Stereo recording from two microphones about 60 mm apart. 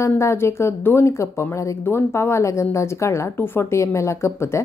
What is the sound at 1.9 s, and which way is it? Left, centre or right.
A woman's voice, left.